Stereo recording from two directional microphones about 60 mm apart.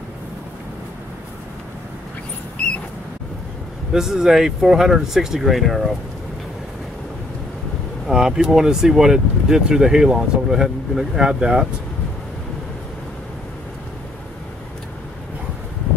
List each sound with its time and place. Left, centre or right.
3.9 s speech: centre
8.1 s speech: centre